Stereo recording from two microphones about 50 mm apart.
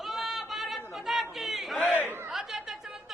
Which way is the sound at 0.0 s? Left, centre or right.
Centre.